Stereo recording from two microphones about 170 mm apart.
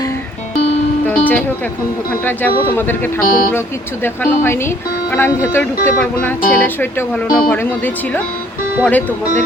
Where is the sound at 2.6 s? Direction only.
10° left (ahead or behind).